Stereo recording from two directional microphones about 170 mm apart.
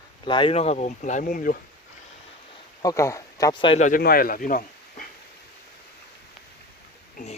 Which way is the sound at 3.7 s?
45° left (ahead or behind).